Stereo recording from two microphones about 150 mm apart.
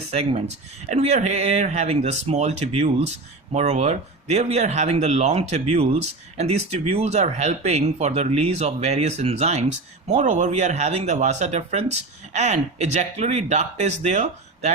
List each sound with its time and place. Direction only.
0.1 s speech: 40° right (ahead or behind)